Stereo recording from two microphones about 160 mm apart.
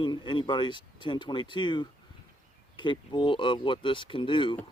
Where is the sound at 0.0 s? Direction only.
30° left (ahead or behind).